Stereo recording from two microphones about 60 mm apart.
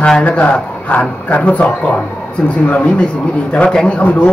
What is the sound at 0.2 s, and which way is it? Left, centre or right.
A man's voice, left.